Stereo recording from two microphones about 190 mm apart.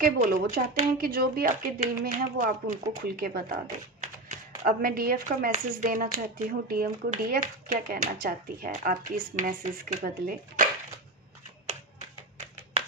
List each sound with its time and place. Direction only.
0.0 s speech: 50° right (ahead or behind)